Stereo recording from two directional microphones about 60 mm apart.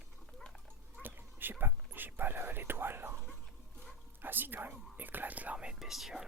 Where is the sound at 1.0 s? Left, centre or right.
Right.